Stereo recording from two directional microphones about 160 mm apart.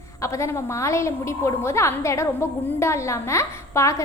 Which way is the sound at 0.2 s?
20° left (ahead or behind).